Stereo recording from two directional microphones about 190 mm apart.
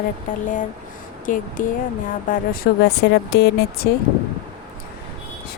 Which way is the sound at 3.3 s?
60° left (ahead or behind).